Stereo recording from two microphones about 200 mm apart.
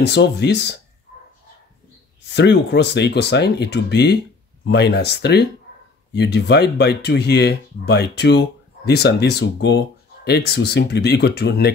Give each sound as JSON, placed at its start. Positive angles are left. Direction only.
{"t": 0.0, "sound": "speech", "side_deg": 55}
{"t": 2.2, "sound": "speech", "side_deg": 60}